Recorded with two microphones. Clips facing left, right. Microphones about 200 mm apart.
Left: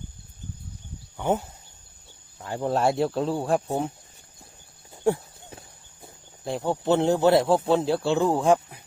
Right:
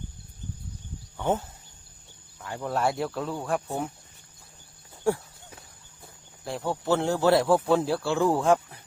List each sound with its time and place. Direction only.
1.1 s speech: 15° left (ahead or behind)
2.4 s speech: 30° left (ahead or behind)
5.0 s horse: 25° left (ahead or behind)
6.4 s speech: 20° left (ahead or behind)